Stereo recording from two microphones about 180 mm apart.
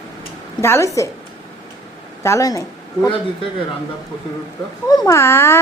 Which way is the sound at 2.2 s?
15° left (ahead or behind).